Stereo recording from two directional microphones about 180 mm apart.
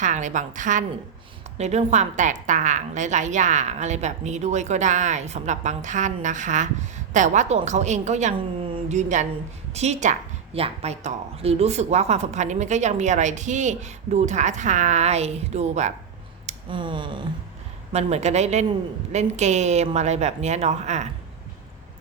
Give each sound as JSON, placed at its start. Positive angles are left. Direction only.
{"t": 0.0, "sound": "a woman's voice", "side_deg": -45}
{"t": 16.5, "sound": "speech", "side_deg": -25}
{"t": 17.9, "sound": "a woman's voice", "side_deg": -40}